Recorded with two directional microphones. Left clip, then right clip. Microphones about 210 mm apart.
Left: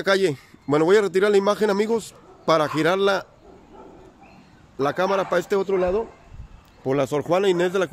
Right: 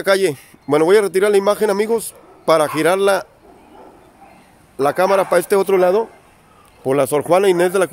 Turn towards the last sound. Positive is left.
turn(degrees=-30)  # may be behind; listen again after turning